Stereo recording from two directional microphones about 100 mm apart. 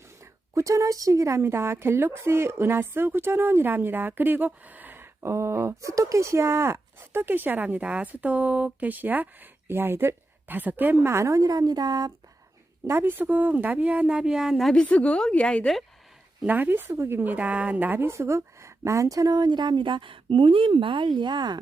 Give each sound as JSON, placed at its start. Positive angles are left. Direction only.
{"t": 0.5, "sound": "speech", "side_deg": -35}
{"t": 12.9, "sound": "speech", "side_deg": -20}
{"t": 16.5, "sound": "a woman's voice", "side_deg": -20}